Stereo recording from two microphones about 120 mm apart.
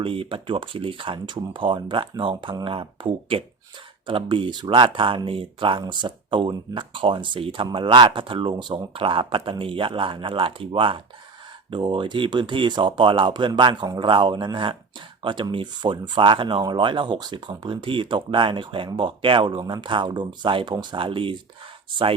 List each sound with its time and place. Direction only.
0.0 s speech: 45° right (ahead or behind)